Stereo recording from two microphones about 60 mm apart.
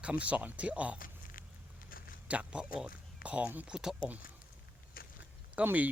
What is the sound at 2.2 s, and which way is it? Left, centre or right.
Speech, right.